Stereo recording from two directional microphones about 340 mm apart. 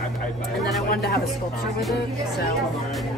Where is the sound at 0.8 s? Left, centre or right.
Left.